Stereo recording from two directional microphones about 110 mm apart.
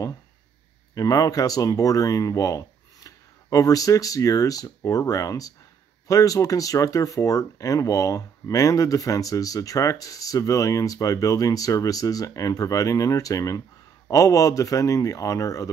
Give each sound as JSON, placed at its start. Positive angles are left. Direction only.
{"t": 0.9, "sound": "speech", "side_deg": 35}